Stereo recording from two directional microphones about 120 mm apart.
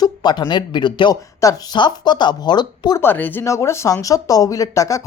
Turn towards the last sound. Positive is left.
turn(degrees=25)  # may be behind; listen again after turning